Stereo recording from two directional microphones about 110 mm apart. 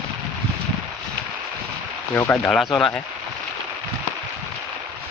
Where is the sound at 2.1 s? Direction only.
20° left (ahead or behind).